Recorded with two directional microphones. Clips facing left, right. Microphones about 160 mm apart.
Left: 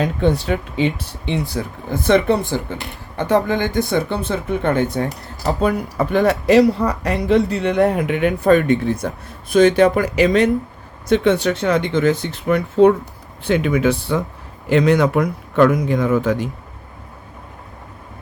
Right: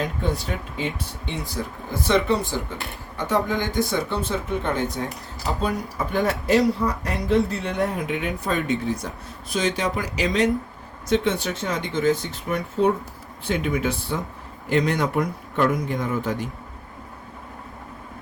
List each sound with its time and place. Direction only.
0.0 s speech: 75° left (ahead or behind)
2.0 s speech: 60° left (ahead or behind); by 16.5 s 85° left